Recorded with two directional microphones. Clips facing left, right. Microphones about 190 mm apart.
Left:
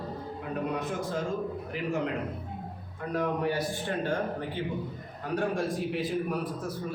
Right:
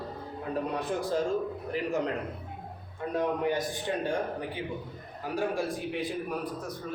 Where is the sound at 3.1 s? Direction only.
20° right (ahead or behind).